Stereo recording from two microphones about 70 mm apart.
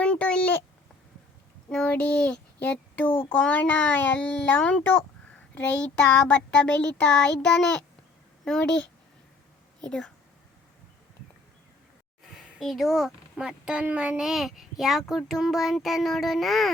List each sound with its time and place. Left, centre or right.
0.0 s a sound: centre
1.9 s a child's voice: centre
5.5 s child singing: centre
9.8 s speech: centre
12.4 s a child's voice: centre